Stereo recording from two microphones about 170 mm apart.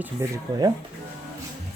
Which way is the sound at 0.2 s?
20° right (ahead or behind).